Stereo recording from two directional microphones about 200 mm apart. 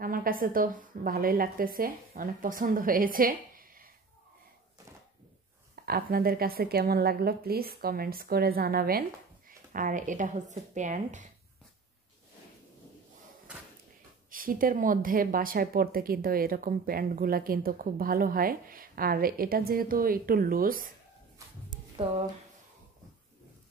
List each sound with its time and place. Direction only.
0.0 s a woman's voice: 45° right (ahead or behind)
5.9 s speech: 50° right (ahead or behind)
14.3 s speech: 45° right (ahead or behind)